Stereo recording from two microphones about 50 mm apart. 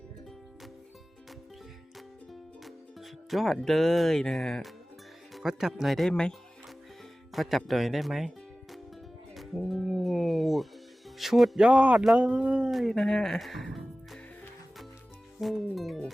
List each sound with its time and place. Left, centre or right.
2.6 s music: centre
3.6 s speech: centre
5.3 s speech: centre
6.1 s speech: centre
7.3 s speech: centre
9.6 s speech: centre
9.8 s music: centre
11.2 s speech: centre
11.6 s speech: right
12.7 s speech: centre
13.0 s speech: centre
15.4 s speech: centre